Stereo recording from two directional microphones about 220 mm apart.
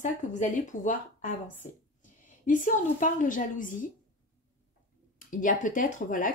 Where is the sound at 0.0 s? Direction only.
35° left (ahead or behind).